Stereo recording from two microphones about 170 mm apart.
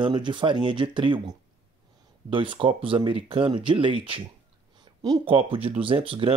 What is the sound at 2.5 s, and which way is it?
Speech, 30° right (ahead or behind).